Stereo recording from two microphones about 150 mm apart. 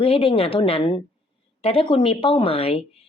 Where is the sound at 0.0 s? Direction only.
40° left (ahead or behind).